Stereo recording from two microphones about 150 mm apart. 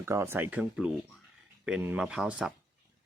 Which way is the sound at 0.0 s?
15° right (ahead or behind).